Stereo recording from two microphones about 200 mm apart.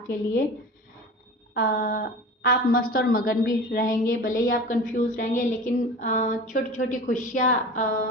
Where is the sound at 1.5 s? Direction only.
45° left (ahead or behind).